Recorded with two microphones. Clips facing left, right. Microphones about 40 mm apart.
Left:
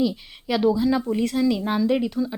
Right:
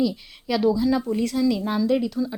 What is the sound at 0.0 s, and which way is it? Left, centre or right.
Speech, centre.